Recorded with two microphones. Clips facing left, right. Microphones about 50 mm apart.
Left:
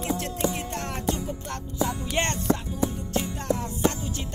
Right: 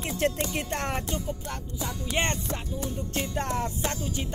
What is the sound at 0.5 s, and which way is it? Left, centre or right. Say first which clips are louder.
Music: right 2 dB; right.